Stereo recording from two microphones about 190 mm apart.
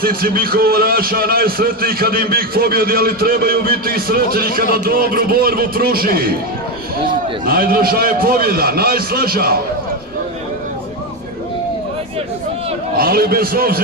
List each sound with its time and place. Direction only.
0.0 s a man's voice: 50° right (ahead or behind)
7.4 s a man's voice: 50° right (ahead or behind)
12.9 s a man's voice: 50° right (ahead or behind)